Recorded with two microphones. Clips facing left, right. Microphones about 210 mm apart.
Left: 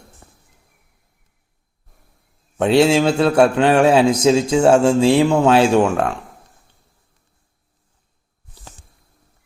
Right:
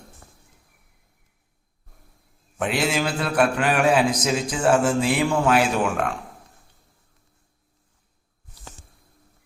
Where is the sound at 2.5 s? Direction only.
30° left (ahead or behind).